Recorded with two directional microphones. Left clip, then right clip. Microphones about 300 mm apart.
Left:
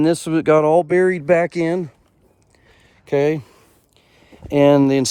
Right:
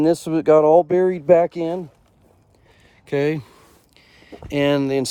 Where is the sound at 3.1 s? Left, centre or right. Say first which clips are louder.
Left 3 dB; centre.